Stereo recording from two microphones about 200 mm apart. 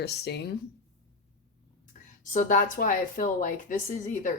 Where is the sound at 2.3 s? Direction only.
40° left (ahead or behind).